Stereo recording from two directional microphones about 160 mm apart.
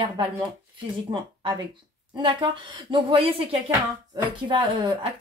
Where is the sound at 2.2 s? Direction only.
30° right (ahead or behind).